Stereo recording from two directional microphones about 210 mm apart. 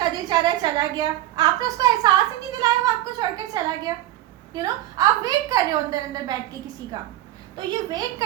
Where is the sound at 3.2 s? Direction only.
20° right (ahead or behind).